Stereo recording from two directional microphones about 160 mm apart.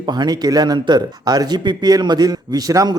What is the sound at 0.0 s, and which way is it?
Speech, 25° right (ahead or behind).